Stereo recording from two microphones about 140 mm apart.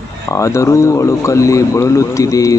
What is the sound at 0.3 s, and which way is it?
Speech, 20° left (ahead or behind).